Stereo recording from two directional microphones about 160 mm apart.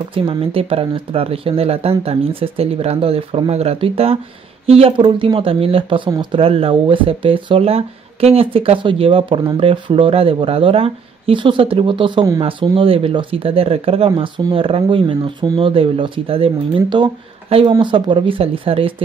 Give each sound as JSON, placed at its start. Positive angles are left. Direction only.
{"t": 0.1, "sound": "speech", "side_deg": -35}